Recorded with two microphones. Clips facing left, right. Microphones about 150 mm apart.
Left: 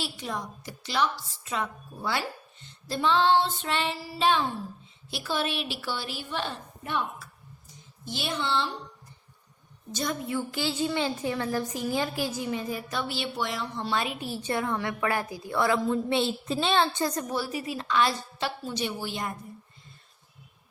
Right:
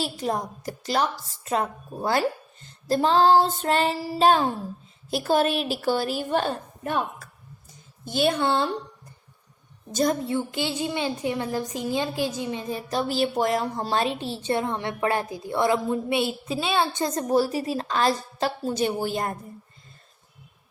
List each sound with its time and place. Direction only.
0.0 s a woman's voice: 40° right (ahead or behind)
9.9 s a woman's voice: 40° right (ahead or behind)
10.3 s a woman's voice: 20° right (ahead or behind)
17.2 s a woman's voice: 35° right (ahead or behind)